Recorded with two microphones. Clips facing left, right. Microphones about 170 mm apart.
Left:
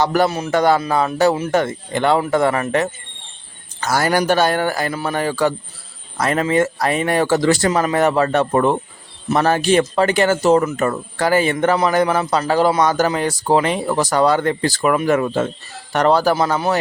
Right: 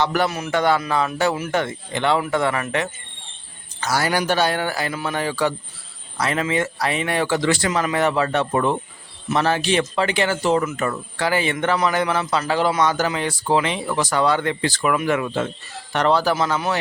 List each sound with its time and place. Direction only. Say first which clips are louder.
0.0 s speech: left 4 dB; 40° left (ahead or behind)